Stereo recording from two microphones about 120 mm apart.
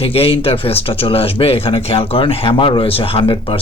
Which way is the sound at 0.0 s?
55° left (ahead or behind).